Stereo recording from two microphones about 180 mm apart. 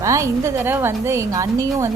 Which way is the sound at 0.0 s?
15° right (ahead or behind).